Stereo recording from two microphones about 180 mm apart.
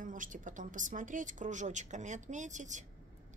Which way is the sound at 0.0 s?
45° right (ahead or behind).